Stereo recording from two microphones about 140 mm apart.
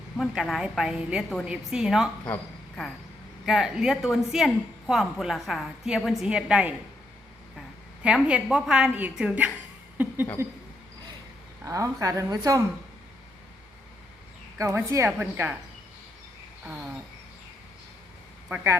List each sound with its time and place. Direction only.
0.2 s a woman's voice: centre (ahead or behind)
2.2 s a woman's voice: 5° left (ahead or behind)
8.0 s a woman's voice: 5° right (ahead or behind)
10.0 s a sound: 10° right (ahead or behind)
10.4 s a woman's voice: 15° right (ahead or behind)
11.6 s a woman's voice: 25° right (ahead or behind)
14.6 s a woman's voice: 20° right (ahead or behind)
16.6 s a woman's voice: 10° right (ahead or behind)
18.4 s a woman's voice: 15° right (ahead or behind)